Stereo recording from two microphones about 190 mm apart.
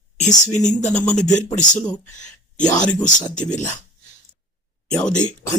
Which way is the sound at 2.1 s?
40° left (ahead or behind).